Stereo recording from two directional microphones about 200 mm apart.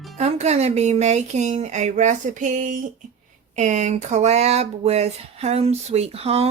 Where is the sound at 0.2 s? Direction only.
35° right (ahead or behind).